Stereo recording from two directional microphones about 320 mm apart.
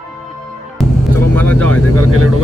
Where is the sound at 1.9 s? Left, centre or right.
Right.